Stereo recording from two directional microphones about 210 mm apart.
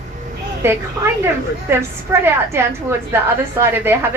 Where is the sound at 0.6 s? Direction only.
10° right (ahead or behind).